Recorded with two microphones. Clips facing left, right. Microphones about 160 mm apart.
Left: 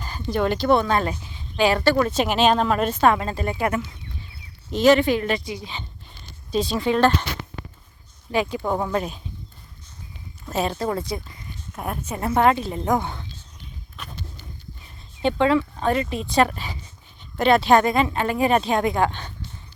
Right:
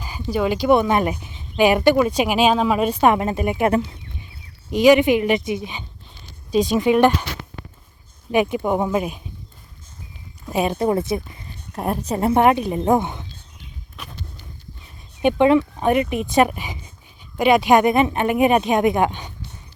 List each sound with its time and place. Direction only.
0.0 s speech: 10° right (ahead or behind)
4.7 s speech: 15° right (ahead or behind)
8.3 s speech: 20° right (ahead or behind)
10.4 s a woman's voice: 15° right (ahead or behind)
11.7 s a woman's voice: 35° right (ahead or behind); by 13.2 s 20° right (ahead or behind)
13.9 s a sound: 5° right (ahead or behind)
15.2 s speech: 15° right (ahead or behind)